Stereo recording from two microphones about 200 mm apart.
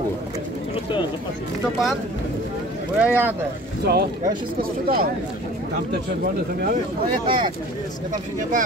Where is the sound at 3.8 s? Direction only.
55° right (ahead or behind).